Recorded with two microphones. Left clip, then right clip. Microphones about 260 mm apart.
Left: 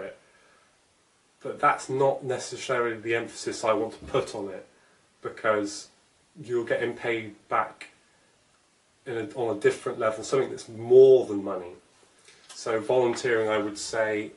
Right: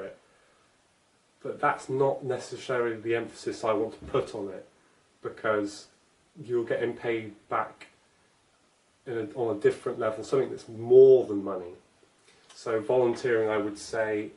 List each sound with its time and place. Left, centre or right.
1.4 s speech: centre
9.0 s speech: centre
11.0 s speech: right
11.2 s speech: centre